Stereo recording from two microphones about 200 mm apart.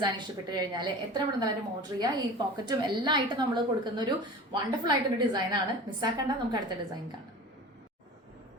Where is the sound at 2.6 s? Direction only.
20° right (ahead or behind).